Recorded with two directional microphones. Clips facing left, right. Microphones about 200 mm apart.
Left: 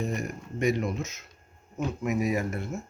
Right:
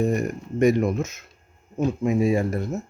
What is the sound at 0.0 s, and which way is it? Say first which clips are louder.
Speech: right 9 dB; 50° right (ahead or behind).